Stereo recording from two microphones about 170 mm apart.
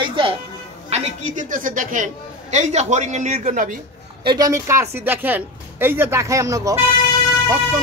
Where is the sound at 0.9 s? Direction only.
40° right (ahead or behind).